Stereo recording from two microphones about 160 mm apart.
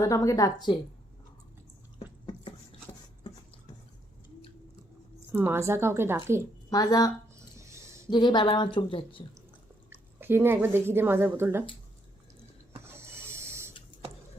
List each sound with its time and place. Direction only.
0.0 s speech: 20° left (ahead or behind)
5.3 s a woman's voice: 15° right (ahead or behind)
6.7 s speech: 25° left (ahead or behind)
7.3 s a sound: 20° right (ahead or behind)
8.1 s a woman's voice: 25° left (ahead or behind)
10.2 s a woman's voice: 15° right (ahead or behind)
13.0 s printer: 15° right (ahead or behind)